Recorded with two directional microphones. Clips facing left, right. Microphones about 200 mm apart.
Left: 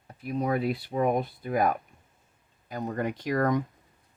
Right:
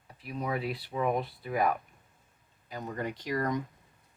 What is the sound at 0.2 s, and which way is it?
Speech, 45° left (ahead or behind).